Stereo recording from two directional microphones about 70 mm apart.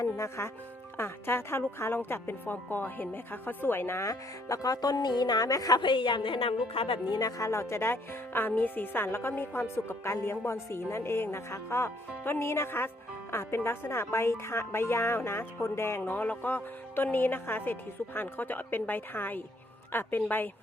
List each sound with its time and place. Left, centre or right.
0.0 s speech: left
7.1 s speech: left
16.1 s a woman's voice: left